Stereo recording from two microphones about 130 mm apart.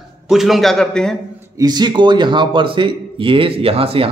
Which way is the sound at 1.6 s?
35° right (ahead or behind).